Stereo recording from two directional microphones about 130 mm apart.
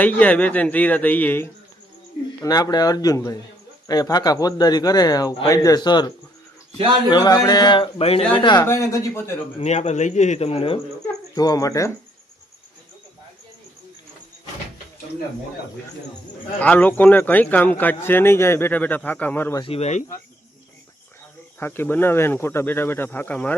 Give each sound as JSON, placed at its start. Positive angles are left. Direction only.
{"t": 0.0, "sound": "a man's voice", "side_deg": 10}
{"t": 2.4, "sound": "speech", "side_deg": 30}
{"t": 7.1, "sound": "speech", "side_deg": 30}
{"t": 8.3, "sound": "speech", "side_deg": 40}
{"t": 8.6, "sound": "speech", "side_deg": 20}
{"t": 9.6, "sound": "speech", "side_deg": 60}
{"t": 11.3, "sound": "speech", "side_deg": 30}
{"t": 16.6, "sound": "a man's voice", "side_deg": 10}
{"t": 19.6, "sound": "speech", "side_deg": 50}
{"t": 21.6, "sound": "a man's voice", "side_deg": 15}